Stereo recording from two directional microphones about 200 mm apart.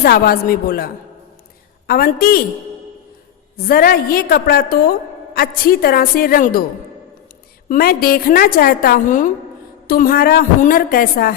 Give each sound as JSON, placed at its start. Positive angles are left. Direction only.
{"t": 0.0, "sound": "a woman's voice", "side_deg": 45}
{"t": 1.9, "sound": "a woman's voice", "side_deg": 45}
{"t": 3.6, "sound": "a woman's voice", "side_deg": 45}
{"t": 7.7, "sound": "a woman's voice", "side_deg": 45}